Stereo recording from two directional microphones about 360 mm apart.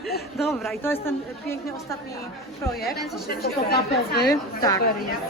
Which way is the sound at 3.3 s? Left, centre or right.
Left.